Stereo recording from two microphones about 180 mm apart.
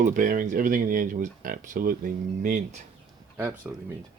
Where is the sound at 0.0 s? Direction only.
45° right (ahead or behind).